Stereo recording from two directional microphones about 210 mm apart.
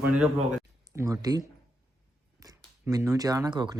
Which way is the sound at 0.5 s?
10° right (ahead or behind).